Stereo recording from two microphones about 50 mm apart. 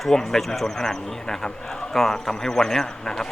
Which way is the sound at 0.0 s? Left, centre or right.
Centre.